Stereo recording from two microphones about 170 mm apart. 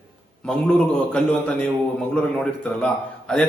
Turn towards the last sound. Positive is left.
turn(degrees=5)  # may be behind; listen again after turning